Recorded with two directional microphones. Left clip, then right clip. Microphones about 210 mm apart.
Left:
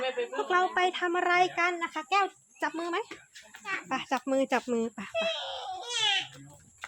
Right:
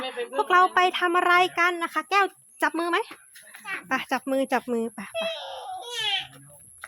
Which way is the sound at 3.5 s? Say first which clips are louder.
Right 1 dB; 15° right (ahead or behind).